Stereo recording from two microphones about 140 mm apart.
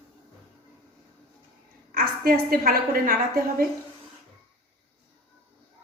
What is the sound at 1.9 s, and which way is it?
A woman's voice, 90° right.